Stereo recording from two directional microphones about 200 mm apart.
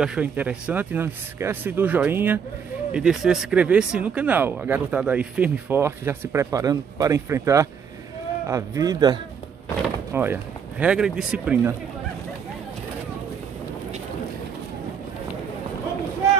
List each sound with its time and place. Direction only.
0.0 s speech: 5° right (ahead or behind)